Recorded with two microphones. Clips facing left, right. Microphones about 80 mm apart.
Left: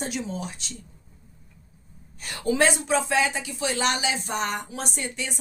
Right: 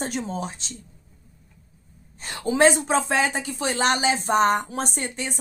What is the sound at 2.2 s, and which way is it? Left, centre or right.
Speech, right.